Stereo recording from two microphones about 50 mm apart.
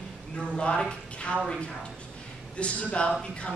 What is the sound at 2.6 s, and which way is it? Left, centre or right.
Speech, left.